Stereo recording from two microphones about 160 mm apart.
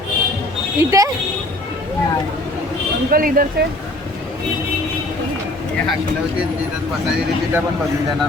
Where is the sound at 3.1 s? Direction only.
65° right (ahead or behind).